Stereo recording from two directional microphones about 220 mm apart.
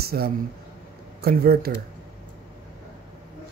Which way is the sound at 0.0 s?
45° right (ahead or behind).